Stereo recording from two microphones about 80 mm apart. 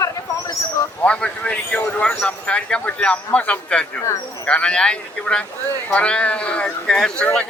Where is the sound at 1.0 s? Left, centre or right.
Centre.